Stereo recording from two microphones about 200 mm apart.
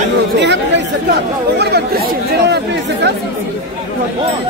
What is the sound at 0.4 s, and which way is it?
Chatter, 60° right (ahead or behind).